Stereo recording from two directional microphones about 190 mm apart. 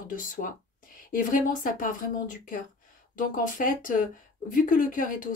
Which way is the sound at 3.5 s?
45° left (ahead or behind).